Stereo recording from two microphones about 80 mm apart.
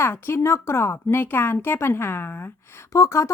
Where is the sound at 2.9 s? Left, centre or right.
Left.